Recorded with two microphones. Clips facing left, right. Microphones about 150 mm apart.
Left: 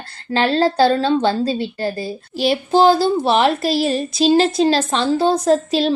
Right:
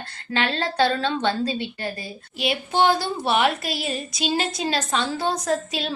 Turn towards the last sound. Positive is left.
turn(degrees=30)  # may be behind; listen again after turning